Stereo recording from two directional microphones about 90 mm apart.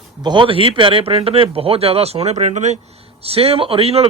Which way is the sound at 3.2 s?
90° right.